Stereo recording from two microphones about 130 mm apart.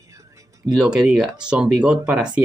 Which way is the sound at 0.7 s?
5° right (ahead or behind).